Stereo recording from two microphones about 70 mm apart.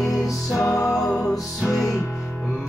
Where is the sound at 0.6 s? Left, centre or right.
Left.